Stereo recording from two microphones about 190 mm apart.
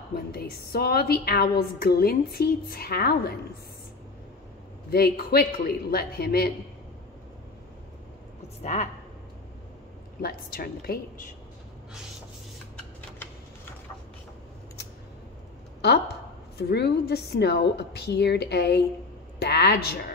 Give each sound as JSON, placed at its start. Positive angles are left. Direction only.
{"t": 0.1, "sound": "a woman's voice", "side_deg": 55}
{"t": 4.9, "sound": "a woman's voice", "side_deg": 55}
{"t": 10.2, "sound": "a woman's voice", "side_deg": 55}
{"t": 16.5, "sound": "a woman's voice", "side_deg": 60}